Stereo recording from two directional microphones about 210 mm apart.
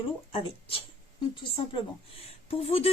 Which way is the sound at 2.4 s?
30° left (ahead or behind).